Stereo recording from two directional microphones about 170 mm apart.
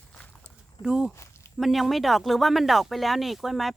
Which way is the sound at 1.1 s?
15° left (ahead or behind).